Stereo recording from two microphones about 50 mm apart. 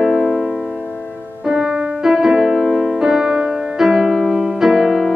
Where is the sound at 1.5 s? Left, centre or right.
Centre.